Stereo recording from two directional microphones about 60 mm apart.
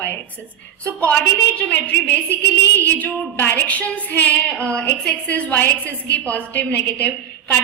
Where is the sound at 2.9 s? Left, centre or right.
Left.